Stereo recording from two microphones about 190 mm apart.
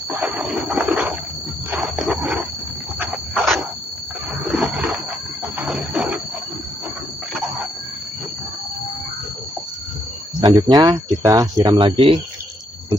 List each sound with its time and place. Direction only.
0.1 s dog: 5° right (ahead or behind)
1.7 s wild animals: centre (ahead or behind)
3.0 s a sound: centre (ahead or behind)
4.5 s wild animals: 5° right (ahead or behind)
5.6 s a sound: 5° right (ahead or behind)
10.4 s speech: 20° right (ahead or behind)